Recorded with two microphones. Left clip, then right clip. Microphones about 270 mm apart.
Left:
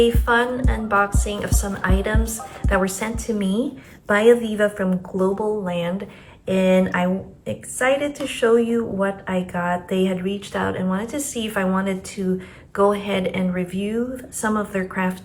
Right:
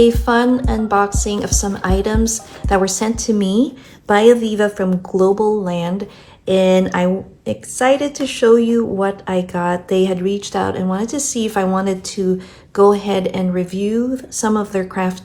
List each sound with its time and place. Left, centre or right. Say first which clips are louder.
0.0 s speech: right 5 dB; centre